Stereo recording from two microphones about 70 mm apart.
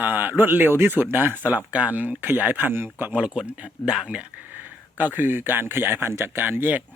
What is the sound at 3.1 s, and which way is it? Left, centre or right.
Speech, centre.